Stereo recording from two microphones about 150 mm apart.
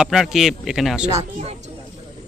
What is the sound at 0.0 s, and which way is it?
Speech, 5° right (ahead or behind).